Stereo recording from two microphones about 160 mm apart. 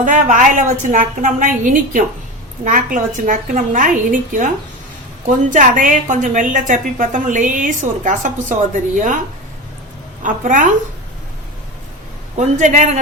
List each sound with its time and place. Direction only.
0.0 s a woman's voice: 55° right (ahead or behind)
10.2 s a woman's voice: 50° right (ahead or behind)
12.4 s a woman's voice: 50° right (ahead or behind)